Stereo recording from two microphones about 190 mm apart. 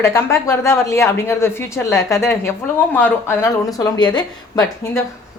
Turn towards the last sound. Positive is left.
turn(degrees=20)  # may be behind; listen again after turning